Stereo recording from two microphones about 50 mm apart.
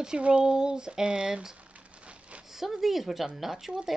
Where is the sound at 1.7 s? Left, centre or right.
Right.